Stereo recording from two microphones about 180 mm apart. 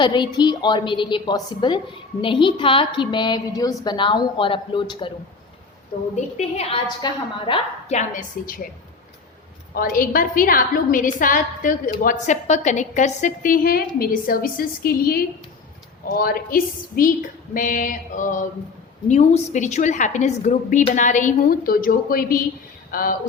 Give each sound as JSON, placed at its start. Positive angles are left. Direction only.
{"t": 0.0, "sound": "a woman's voice", "side_deg": 25}
{"t": 6.1, "sound": "a woman's voice", "side_deg": 40}
{"t": 7.0, "sound": "a woman's voice", "side_deg": 30}
{"t": 7.9, "sound": "a woman's voice", "side_deg": 50}
{"t": 9.7, "sound": "a woman's voice", "side_deg": 50}